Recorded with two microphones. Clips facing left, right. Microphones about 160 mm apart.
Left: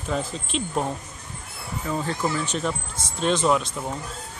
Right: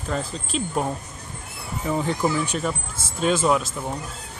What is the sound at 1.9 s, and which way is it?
Speech, 15° right (ahead or behind).